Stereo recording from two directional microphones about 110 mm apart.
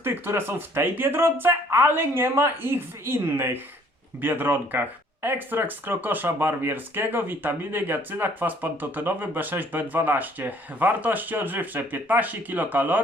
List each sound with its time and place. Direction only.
0.0 s speech: 20° right (ahead or behind)